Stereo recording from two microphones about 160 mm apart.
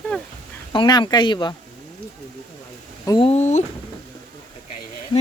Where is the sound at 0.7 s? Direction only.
30° left (ahead or behind).